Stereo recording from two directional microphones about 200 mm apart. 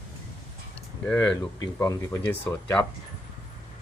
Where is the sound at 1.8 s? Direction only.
10° left (ahead or behind).